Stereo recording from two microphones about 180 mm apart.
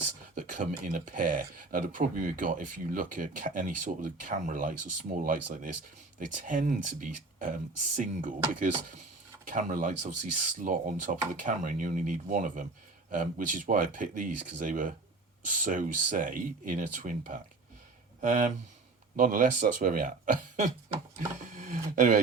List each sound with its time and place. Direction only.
0.3 s speech: 45° right (ahead or behind)
9.5 s speech: 45° right (ahead or behind)